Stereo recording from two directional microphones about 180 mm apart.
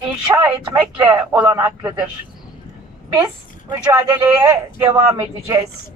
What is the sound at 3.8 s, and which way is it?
Speech, 20° right (ahead or behind).